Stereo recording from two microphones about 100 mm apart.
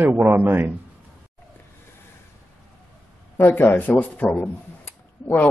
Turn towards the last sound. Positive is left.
turn(degrees=20)  # may be behind; listen again after turning